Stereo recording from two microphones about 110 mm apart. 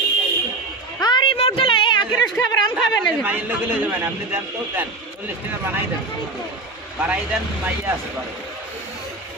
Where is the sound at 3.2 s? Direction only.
15° right (ahead or behind).